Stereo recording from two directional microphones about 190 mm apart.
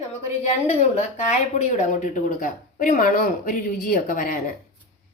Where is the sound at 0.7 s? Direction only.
35° left (ahead or behind).